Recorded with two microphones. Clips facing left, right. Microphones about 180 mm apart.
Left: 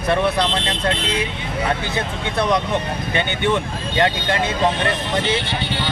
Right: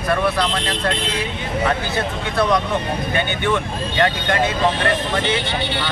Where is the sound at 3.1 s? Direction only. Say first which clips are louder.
Left 2 dB; 20° left (ahead or behind).